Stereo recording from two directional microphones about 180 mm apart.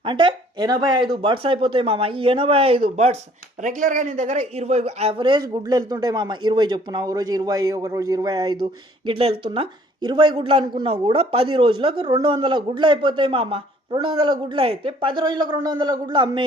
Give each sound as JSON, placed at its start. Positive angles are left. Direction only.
{"t": 0.0, "sound": "speech", "side_deg": -25}